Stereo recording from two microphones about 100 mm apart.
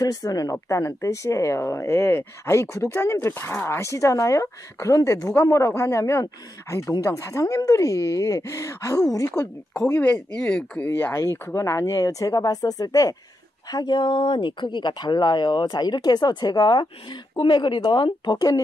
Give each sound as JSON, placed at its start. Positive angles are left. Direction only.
{"t": 0.0, "sound": "speech", "side_deg": 40}
{"t": 10.9, "sound": "speech", "side_deg": 25}